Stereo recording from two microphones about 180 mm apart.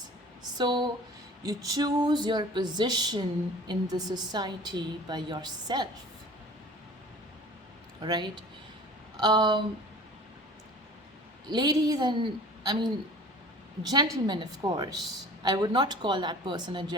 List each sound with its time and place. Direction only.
0.6 s a woman's voice: 25° right (ahead or behind)
8.0 s a woman's voice: 25° right (ahead or behind)
11.4 s a woman's voice: 25° right (ahead or behind)
13.9 s a woman's voice: 25° right (ahead or behind)